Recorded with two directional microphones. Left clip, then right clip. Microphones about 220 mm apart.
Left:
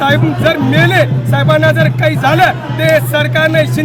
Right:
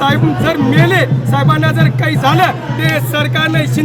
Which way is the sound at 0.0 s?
5° left (ahead or behind).